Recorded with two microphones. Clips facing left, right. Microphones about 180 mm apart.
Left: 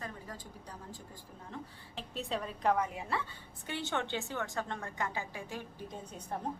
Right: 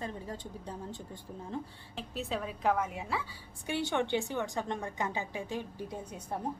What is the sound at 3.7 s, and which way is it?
A woman's voice, 15° right (ahead or behind).